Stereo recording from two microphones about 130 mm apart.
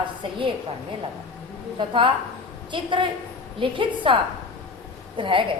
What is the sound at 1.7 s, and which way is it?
Speech, 40° right (ahead or behind).